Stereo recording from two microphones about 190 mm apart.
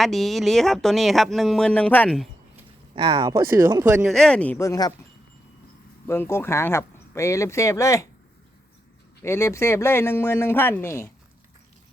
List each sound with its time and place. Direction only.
0.0 s speech: centre (ahead or behind)
2.9 s speech: 25° right (ahead or behind)
4.0 s speech: centre (ahead or behind)
6.1 s speech: 15° left (ahead or behind)
9.2 s speech: 15° left (ahead or behind)